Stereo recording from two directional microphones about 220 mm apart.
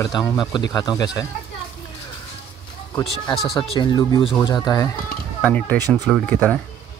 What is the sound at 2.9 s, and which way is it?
Speech, 20° left (ahead or behind).